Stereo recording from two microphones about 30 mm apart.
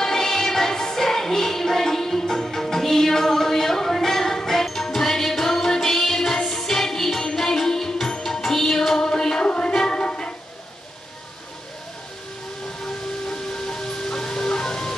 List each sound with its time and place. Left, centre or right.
0.0 s music: centre; by 10.3 s left
12.8 s music: centre